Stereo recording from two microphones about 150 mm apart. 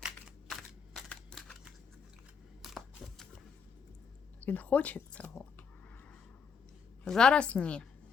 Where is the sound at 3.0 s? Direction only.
5° left (ahead or behind).